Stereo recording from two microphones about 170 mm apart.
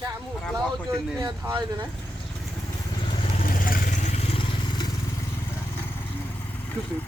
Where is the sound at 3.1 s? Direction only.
30° left (ahead or behind).